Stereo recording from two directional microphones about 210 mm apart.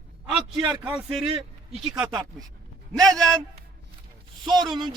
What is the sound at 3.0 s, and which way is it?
Speech, centre (ahead or behind).